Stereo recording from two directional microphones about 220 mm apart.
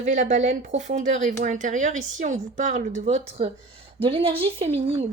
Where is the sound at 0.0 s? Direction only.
35° right (ahead or behind).